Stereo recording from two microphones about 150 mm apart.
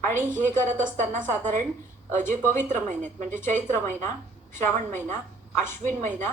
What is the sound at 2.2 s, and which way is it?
A woman's voice, 15° left (ahead or behind).